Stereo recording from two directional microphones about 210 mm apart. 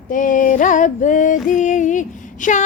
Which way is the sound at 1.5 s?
35° left (ahead or behind).